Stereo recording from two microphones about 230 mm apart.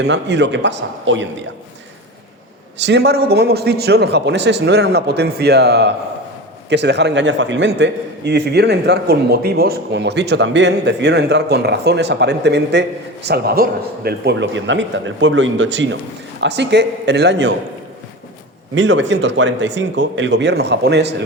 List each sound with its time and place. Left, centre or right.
0.0 s a man's voice: right
2.8 s a man's voice: right
18.7 s a man's voice: right